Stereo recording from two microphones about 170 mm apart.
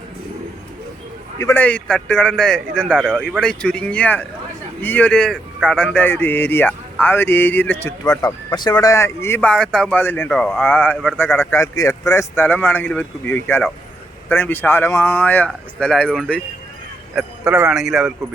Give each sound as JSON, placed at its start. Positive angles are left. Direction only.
{"t": 1.4, "sound": "a man's voice", "side_deg": 15}
{"t": 8.2, "sound": "a man's voice", "side_deg": 25}
{"t": 17.2, "sound": "a man's voice", "side_deg": -5}